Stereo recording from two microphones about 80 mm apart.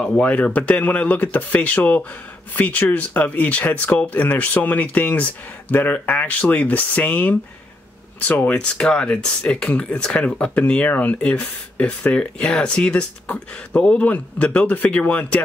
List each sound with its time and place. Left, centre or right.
0.0 s speech: centre